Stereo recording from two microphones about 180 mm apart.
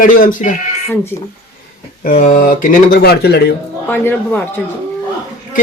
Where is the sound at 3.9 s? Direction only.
10° left (ahead or behind).